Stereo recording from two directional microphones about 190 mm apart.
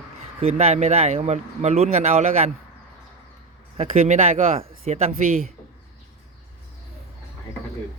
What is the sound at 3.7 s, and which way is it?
Speech, 35° right (ahead or behind).